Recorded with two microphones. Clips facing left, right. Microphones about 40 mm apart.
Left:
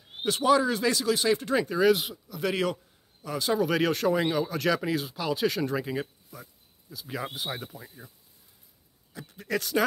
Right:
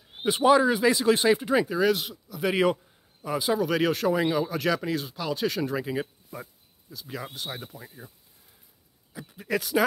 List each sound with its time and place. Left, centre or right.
0.2 s speech: centre
1.0 s speech: right
1.3 s speech: centre
2.5 s speech: centre
3.5 s speech: centre
6.3 s speech: right
6.9 s speech: centre
9.1 s speech: centre